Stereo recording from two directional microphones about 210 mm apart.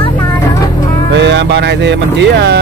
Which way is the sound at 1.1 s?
55° right (ahead or behind).